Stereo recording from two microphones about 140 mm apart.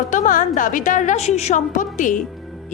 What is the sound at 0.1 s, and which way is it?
A woman's voice, 65° left (ahead or behind).